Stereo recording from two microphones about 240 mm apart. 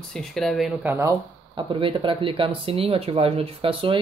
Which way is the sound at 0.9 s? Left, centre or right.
Centre.